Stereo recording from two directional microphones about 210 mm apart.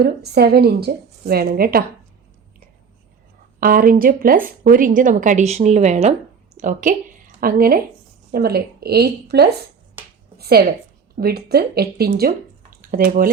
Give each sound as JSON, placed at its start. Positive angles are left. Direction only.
{"t": 0.0, "sound": "a woman's voice", "side_deg": -50}
{"t": 3.6, "sound": "a woman's voice", "side_deg": -45}